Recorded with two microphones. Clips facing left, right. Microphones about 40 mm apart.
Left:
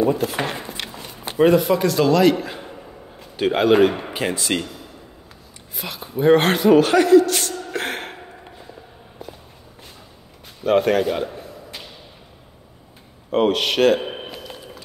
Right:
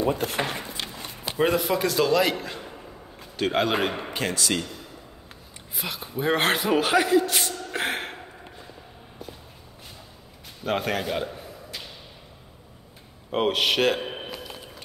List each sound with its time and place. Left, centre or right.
0.0 s speech: left
0.4 s a sound: left
1.4 s a man's voice: centre
4.4 s speech: left
5.8 s a man's voice: centre
7.7 s a sound: centre
10.6 s a man's voice: centre
13.3 s a man's voice: centre
14.0 s a sound: centre